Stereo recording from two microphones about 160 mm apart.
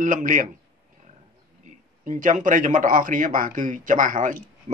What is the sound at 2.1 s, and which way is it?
A man's voice, 55° right (ahead or behind).